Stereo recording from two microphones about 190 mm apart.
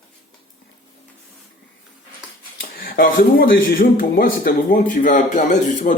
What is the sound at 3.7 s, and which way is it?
Speech, 50° left (ahead or behind).